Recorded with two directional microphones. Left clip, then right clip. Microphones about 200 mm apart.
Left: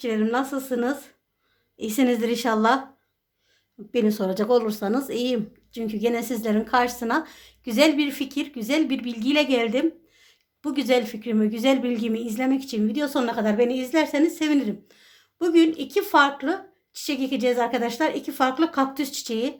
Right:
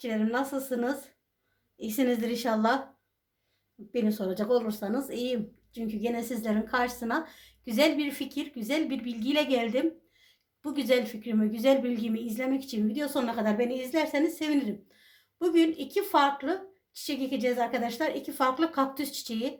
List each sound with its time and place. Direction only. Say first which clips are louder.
0.0 s speech: left 6 dB; 35° left (ahead or behind)
3.9 s speech: left 7 dB; 40° left (ahead or behind)